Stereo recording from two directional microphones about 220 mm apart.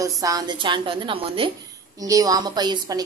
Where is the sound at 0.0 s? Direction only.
15° right (ahead or behind).